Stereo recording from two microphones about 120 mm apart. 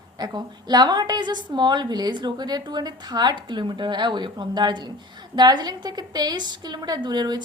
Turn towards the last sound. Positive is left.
turn(degrees=-35)  # may be behind; listen again after turning